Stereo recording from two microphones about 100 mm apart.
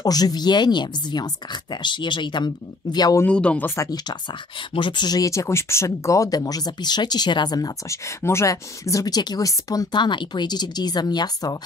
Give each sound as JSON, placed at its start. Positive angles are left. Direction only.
{"t": 0.0, "sound": "speech", "side_deg": 40}
{"t": 3.3, "sound": "speech", "side_deg": 10}
{"t": 3.7, "sound": "speech", "side_deg": 35}
{"t": 4.1, "sound": "speech", "side_deg": 55}
{"t": 7.9, "sound": "speech", "side_deg": 30}